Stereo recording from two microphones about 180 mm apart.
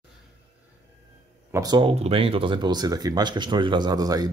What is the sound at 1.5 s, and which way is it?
Speech, 20° right (ahead or behind).